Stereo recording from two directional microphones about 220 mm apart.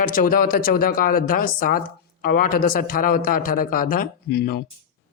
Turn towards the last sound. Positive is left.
turn(degrees=40)  # may be behind; listen again after turning